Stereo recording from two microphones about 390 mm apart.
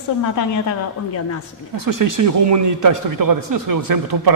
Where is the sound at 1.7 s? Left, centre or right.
Right.